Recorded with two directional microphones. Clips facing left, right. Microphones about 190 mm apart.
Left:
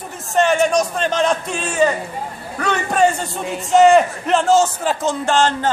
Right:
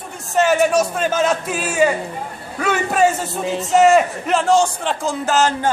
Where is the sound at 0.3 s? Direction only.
5° right (ahead or behind).